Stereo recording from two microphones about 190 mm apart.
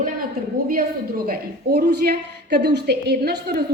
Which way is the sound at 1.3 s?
55° right (ahead or behind).